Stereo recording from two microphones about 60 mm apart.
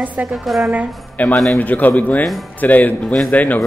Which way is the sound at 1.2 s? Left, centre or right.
Left.